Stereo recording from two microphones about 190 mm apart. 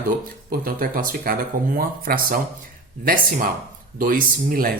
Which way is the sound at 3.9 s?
45° right (ahead or behind).